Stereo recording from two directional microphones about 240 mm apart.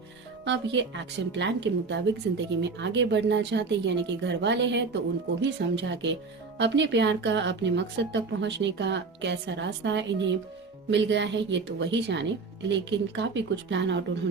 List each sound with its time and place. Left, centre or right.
0.4 s a woman's voice: right